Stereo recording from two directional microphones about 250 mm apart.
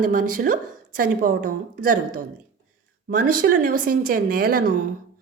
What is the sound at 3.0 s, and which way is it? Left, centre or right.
A woman's voice, right.